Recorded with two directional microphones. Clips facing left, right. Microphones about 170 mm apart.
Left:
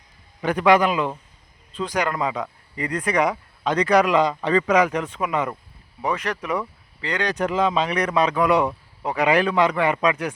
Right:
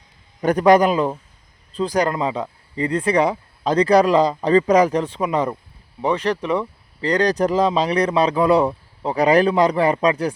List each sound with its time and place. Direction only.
0.4 s speech: 40° right (ahead or behind)